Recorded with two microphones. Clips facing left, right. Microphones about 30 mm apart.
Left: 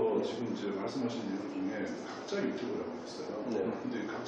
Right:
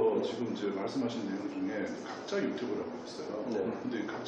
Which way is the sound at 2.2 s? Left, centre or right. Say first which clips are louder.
Right 1 dB; centre.